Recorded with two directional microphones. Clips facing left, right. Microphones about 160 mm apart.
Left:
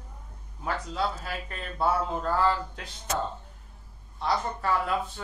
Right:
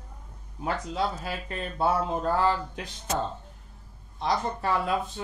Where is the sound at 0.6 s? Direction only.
20° right (ahead or behind).